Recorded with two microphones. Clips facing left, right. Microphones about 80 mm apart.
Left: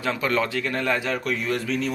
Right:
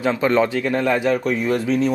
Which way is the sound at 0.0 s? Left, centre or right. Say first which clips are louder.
Right 6 dB; right.